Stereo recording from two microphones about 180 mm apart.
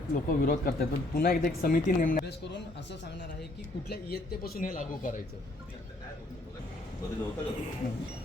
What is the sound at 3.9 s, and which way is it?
Speech, 60° left (ahead or behind).